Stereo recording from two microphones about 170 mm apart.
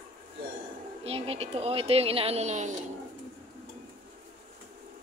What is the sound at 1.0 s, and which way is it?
Speech, 35° right (ahead or behind).